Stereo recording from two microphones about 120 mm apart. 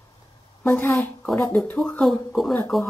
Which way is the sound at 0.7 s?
15° left (ahead or behind).